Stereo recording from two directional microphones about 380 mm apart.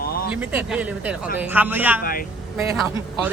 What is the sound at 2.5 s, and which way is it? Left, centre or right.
Speech, centre.